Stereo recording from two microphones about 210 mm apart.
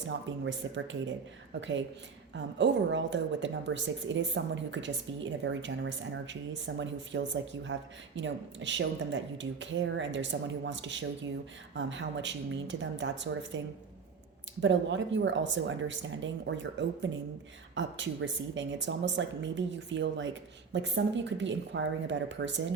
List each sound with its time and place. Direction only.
0.1 s speech: 60° right (ahead or behind)
2.3 s speech: 60° right (ahead or behind)
14.6 s speech: 60° right (ahead or behind)